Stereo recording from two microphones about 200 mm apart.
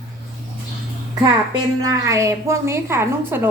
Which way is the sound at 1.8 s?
15° right (ahead or behind).